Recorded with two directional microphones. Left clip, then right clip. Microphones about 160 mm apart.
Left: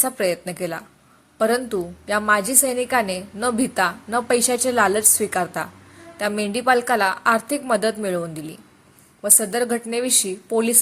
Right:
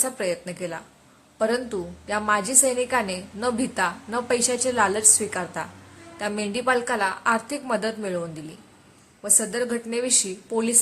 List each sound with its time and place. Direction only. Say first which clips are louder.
0.0 s a woman's voice: left 4 dB; 25° left (ahead or behind)